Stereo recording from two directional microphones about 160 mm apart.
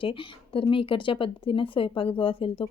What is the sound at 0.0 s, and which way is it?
A woman's voice, 35° left (ahead or behind).